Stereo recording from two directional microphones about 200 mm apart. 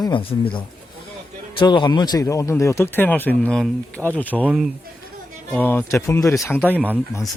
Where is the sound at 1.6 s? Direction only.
20° left (ahead or behind).